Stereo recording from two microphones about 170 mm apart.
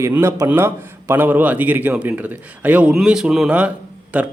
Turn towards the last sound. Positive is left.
turn(degrees=-10)  # may be behind; listen again after turning